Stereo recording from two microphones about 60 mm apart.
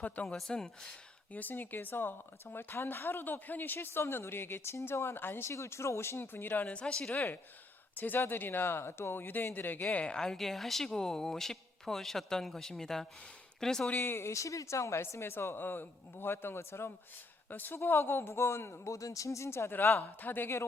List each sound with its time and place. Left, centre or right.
0.3 s speech: centre
1.3 s speech: left
5.5 s speech: left
9.8 s speech: centre
13.9 s speech: left
14.3 s speech: left
17.5 s speech: left
18.9 s speech: left